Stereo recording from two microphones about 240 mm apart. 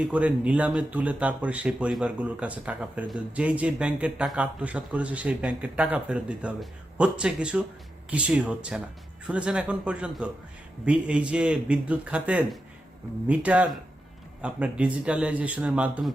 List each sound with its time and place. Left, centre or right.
0.0 s speech: centre